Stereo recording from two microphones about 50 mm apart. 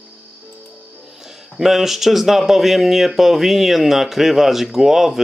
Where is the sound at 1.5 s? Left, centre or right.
Centre.